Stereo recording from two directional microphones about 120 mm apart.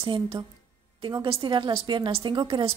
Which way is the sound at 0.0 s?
45° right (ahead or behind).